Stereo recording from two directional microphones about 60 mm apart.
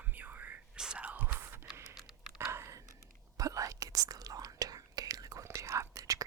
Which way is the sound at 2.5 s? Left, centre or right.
Right.